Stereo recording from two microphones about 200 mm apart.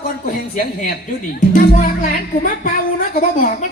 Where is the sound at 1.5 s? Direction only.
45° left (ahead or behind).